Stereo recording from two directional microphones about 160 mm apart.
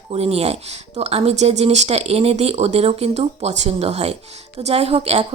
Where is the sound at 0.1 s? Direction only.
40° right (ahead or behind).